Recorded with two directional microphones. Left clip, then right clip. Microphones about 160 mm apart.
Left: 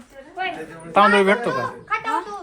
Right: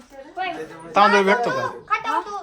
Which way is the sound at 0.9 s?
20° right (ahead or behind).